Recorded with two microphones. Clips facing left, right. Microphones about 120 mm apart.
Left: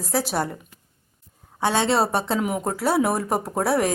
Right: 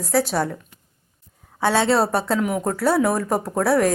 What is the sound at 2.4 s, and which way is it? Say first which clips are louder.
Speech: right 2 dB; 20° left (ahead or behind).